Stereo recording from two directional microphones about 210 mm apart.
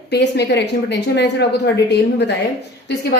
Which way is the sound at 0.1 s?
50° left (ahead or behind).